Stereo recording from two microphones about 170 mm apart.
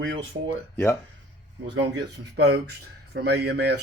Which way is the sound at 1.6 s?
90° right.